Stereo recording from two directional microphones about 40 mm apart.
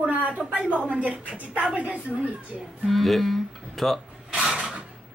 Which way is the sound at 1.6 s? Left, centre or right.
Right.